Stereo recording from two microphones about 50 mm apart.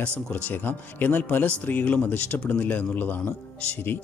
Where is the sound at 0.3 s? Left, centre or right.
Left.